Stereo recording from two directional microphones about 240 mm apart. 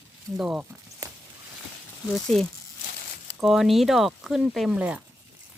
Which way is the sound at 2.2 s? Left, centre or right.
Centre.